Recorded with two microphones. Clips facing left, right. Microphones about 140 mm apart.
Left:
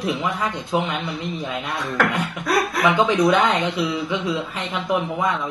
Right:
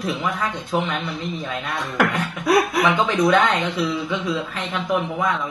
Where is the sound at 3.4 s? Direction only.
15° left (ahead or behind).